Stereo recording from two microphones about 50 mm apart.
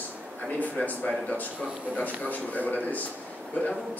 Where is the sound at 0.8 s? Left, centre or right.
Left.